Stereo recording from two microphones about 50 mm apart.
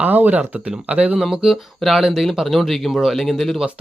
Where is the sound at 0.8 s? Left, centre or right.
Right.